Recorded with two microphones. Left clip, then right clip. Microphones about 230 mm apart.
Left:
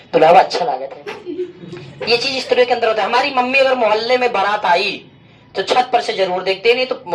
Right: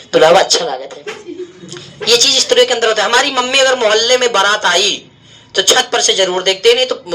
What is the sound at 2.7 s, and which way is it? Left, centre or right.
A man's voice, right.